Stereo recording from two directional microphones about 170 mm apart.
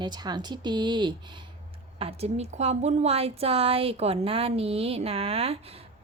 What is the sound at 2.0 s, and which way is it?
Speech, 40° right (ahead or behind).